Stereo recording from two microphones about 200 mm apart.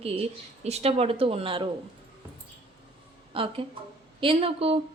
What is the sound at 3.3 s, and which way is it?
A woman's voice, 25° right (ahead or behind).